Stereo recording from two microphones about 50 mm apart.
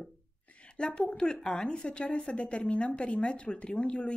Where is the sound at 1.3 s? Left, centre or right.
Centre.